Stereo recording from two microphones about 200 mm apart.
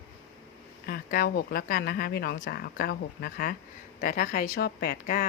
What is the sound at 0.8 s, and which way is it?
Speech, 50° left (ahead or behind).